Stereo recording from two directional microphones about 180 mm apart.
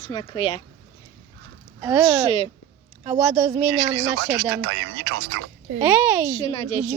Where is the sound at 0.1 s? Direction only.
30° left (ahead or behind).